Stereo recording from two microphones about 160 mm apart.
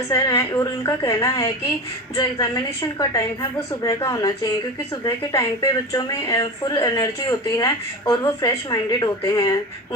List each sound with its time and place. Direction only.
0.1 s speech: 20° left (ahead or behind)
3.8 s speech: 25° left (ahead or behind)